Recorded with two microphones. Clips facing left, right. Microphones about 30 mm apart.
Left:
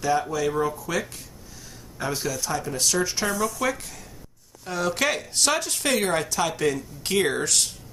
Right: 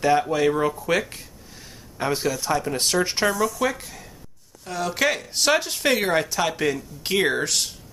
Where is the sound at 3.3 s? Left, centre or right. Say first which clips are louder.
Right 2 dB; centre.